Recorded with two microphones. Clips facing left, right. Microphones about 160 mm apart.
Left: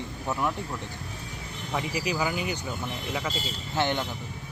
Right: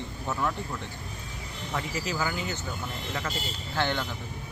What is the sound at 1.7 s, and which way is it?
Speech, 15° left (ahead or behind).